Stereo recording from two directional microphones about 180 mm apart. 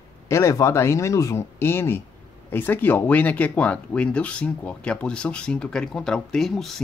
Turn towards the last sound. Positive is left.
turn(degrees=0)  # may be behind; listen again after turning